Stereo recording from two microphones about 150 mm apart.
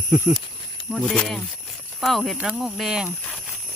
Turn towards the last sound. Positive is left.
turn(degrees=-5)  # may be behind; listen again after turning